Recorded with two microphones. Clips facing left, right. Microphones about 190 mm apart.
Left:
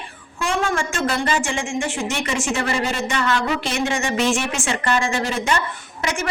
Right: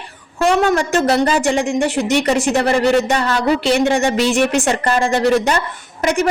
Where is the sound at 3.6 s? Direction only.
65° right (ahead or behind).